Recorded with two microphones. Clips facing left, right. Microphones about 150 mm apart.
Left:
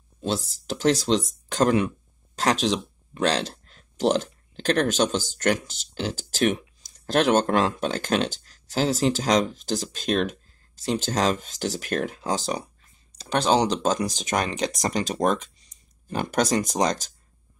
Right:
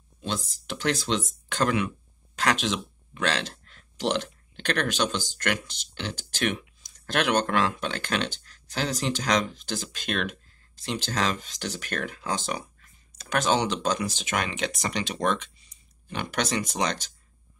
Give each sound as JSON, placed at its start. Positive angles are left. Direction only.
{"t": 0.2, "sound": "speech", "side_deg": 35}